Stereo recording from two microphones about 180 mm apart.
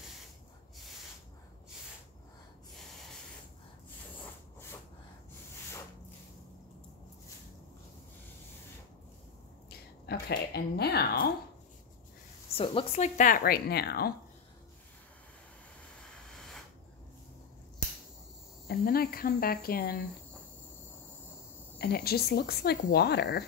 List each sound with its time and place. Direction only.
9.7 s speech: 65° left (ahead or behind)
12.4 s speech: 30° left (ahead or behind); by 14.1 s 60° left (ahead or behind)
18.7 s speech: 55° left (ahead or behind)
21.7 s speech: 60° left (ahead or behind)